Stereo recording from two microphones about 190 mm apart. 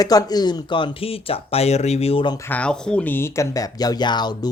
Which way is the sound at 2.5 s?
5° left (ahead or behind).